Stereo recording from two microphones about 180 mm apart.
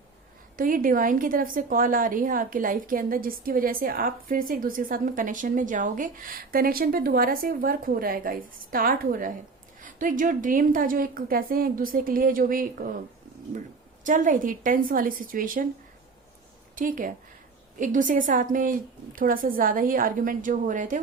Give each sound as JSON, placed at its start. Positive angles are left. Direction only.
{"t": 0.5, "sound": "a woman's voice", "side_deg": -50}
{"t": 14.0, "sound": "a woman's voice", "side_deg": -45}
{"t": 16.7, "sound": "a woman's voice", "side_deg": -50}